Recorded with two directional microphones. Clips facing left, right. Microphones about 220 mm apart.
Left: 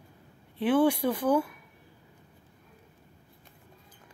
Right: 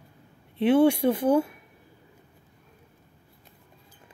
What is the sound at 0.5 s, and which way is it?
Speech, 25° right (ahead or behind).